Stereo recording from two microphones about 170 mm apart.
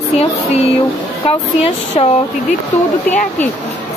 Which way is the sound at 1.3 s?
35° left (ahead or behind).